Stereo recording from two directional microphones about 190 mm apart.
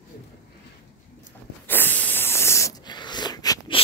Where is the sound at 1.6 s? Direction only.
10° left (ahead or behind).